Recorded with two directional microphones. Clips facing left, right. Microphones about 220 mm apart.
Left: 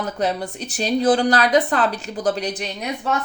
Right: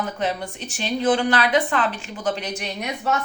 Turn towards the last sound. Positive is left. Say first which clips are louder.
# left 1 dB
turn(degrees=35)  # may be behind; listen again after turning